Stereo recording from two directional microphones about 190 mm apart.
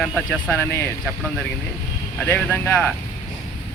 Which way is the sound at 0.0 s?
5° left (ahead or behind).